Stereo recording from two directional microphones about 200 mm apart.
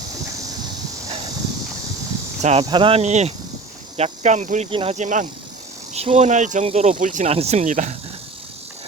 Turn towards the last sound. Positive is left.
turn(degrees=-40)  # may be behind; listen again after turning